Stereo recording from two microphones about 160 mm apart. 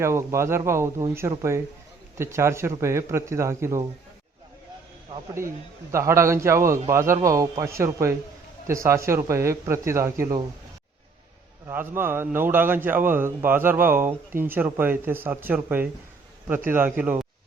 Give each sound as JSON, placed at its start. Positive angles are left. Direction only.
{"t": 0.0, "sound": "a man's voice", "side_deg": -15}
{"t": 5.4, "sound": "a man's voice", "side_deg": -20}
{"t": 11.7, "sound": "a man's voice", "side_deg": -15}